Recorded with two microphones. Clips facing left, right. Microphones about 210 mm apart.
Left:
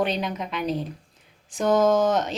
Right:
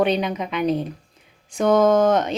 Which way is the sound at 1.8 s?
55° right (ahead or behind).